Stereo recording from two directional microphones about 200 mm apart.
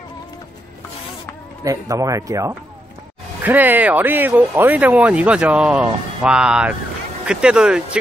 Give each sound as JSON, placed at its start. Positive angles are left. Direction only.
{"t": 1.6, "sound": "speech", "side_deg": -15}